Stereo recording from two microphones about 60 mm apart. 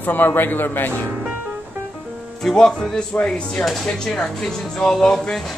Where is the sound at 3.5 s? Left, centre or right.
Centre.